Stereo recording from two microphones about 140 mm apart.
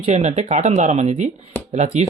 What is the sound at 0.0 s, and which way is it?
Speech, 55° right (ahead or behind).